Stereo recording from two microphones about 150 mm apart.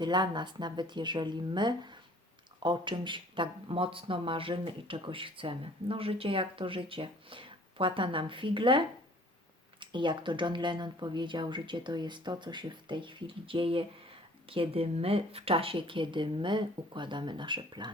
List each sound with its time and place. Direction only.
0.0 s speech: 30° right (ahead or behind)